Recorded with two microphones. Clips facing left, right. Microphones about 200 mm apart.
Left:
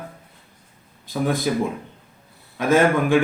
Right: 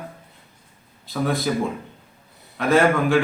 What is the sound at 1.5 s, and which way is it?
Speech, 5° left (ahead or behind).